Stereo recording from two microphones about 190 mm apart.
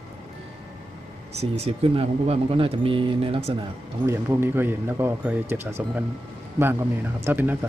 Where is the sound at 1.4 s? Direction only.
35° right (ahead or behind).